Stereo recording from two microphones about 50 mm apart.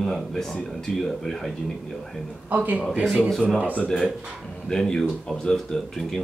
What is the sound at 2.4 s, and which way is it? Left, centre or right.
Speech, right.